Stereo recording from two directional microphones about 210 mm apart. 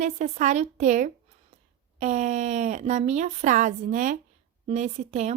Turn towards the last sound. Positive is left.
turn(degrees=-35)  # may be behind; listen again after turning